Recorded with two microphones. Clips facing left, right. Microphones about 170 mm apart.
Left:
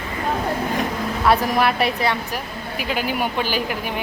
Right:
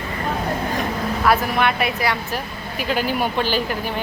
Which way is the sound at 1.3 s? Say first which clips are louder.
Left 2 dB; 35° left (ahead or behind).